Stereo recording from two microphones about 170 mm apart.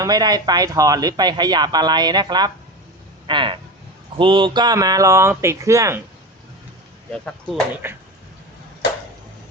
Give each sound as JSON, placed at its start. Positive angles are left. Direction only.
{"t": 0.0, "sound": "speech", "side_deg": -25}
{"t": 7.8, "sound": "speech", "side_deg": -15}